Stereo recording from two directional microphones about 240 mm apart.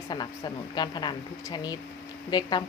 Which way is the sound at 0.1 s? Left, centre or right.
Centre.